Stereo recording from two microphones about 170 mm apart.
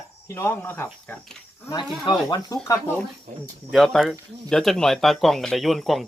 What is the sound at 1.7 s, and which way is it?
Speech, 25° left (ahead or behind).